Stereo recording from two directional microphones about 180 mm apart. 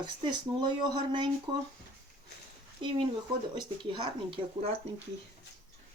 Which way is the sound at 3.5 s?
25° right (ahead or behind).